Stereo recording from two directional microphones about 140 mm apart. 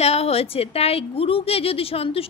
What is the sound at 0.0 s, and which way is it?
A woman's voice, 50° left (ahead or behind).